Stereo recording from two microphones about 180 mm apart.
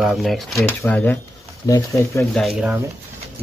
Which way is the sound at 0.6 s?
15° left (ahead or behind).